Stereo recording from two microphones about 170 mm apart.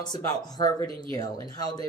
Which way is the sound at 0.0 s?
25° left (ahead or behind).